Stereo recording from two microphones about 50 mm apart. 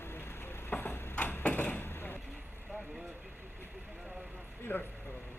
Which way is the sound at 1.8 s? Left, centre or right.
Left.